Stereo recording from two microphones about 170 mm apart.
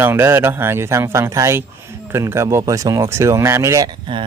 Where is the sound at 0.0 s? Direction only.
15° right (ahead or behind).